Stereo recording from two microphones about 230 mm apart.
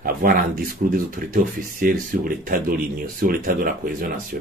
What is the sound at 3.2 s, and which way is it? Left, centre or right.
Speech, right.